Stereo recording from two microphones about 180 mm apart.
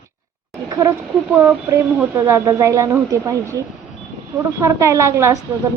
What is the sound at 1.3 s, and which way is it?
A woman's voice, 10° right (ahead or behind).